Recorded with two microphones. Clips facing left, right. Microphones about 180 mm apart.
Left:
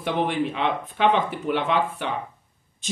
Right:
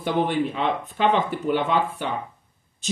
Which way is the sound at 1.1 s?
Centre (ahead or behind).